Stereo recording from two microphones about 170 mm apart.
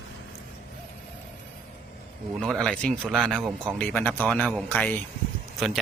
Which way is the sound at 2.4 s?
Centre (ahead or behind).